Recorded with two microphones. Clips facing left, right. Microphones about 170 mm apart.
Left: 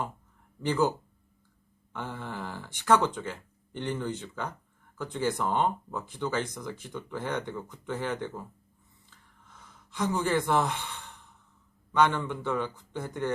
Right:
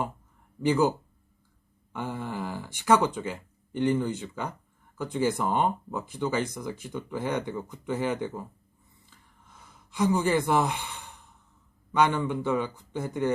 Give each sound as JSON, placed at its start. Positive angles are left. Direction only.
{"t": 0.6, "sound": "speech", "side_deg": -10}
{"t": 9.0, "sound": "gasp", "side_deg": -10}
{"t": 11.9, "sound": "speech", "side_deg": -10}